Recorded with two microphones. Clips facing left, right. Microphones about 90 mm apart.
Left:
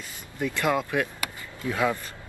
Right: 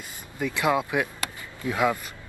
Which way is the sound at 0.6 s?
15° right (ahead or behind).